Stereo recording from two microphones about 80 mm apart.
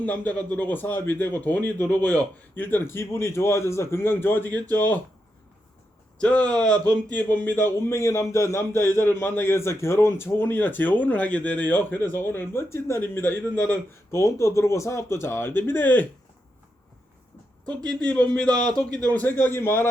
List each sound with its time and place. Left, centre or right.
0.0 s speech: centre
6.1 s speech: centre
17.8 s a man's voice: centre; by 19.9 s left